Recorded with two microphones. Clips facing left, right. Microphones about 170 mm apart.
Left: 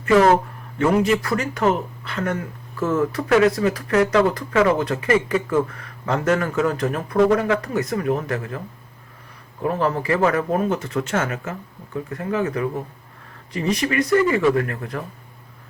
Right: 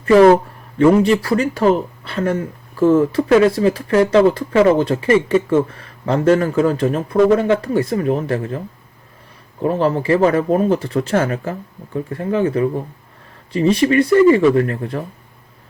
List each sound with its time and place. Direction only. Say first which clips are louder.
0.8 s speech: right 6 dB; 30° right (ahead or behind)